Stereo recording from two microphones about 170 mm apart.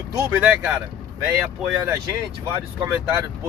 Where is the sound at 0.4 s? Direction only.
10° right (ahead or behind).